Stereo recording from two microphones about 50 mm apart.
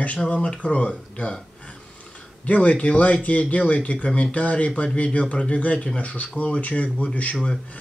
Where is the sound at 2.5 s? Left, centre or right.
Left.